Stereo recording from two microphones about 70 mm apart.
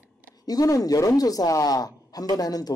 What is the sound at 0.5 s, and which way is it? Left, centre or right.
A man's voice, left.